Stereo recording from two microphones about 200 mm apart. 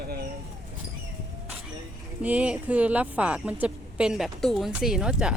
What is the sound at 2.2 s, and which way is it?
A woman's voice, 5° right (ahead or behind).